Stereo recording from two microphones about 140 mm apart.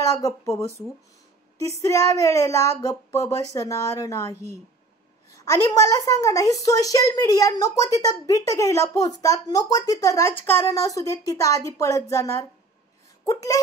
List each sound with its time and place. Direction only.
0.0 s a woman's voice: 25° left (ahead or behind)
1.8 s a woman's voice: 25° left (ahead or behind)
5.4 s a woman's voice: 25° left (ahead or behind)